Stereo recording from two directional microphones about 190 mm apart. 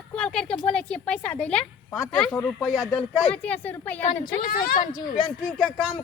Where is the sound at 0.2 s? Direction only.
5° left (ahead or behind).